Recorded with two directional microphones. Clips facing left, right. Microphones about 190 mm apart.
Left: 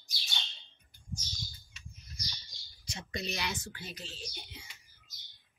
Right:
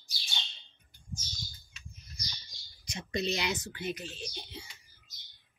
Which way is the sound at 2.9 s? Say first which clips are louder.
Right 6 dB; 20° right (ahead or behind).